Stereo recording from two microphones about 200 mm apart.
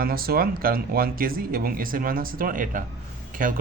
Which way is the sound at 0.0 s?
50° right (ahead or behind).